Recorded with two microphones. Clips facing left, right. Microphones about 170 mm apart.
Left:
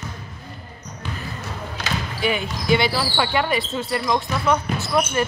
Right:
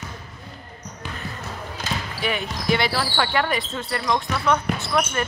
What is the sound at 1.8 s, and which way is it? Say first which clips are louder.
Basketball bounce: left 1 dB; 85° left.